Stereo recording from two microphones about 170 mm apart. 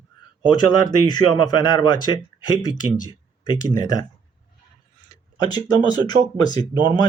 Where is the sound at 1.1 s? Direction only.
25° left (ahead or behind).